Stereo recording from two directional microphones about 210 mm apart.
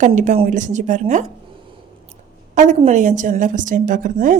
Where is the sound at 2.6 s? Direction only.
35° right (ahead or behind).